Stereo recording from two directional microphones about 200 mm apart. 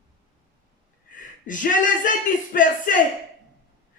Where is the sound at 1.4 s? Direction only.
40° left (ahead or behind).